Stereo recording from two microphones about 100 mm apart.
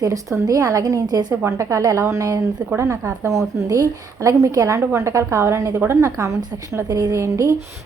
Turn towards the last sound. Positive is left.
turn(degrees=-30)  # may be behind; listen again after turning